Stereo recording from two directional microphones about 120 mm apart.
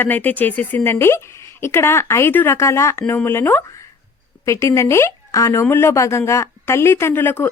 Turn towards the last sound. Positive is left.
turn(degrees=20)  # may be behind; listen again after turning